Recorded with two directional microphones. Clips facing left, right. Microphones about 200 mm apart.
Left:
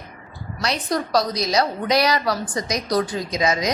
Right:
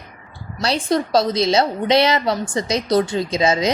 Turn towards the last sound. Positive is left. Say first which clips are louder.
# right 4 dB
turn(degrees=-25)  # may be behind; listen again after turning